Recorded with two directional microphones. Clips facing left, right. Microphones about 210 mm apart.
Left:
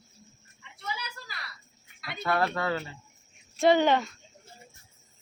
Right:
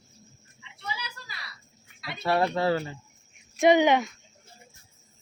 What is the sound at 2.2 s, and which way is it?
Speech, 25° right (ahead or behind).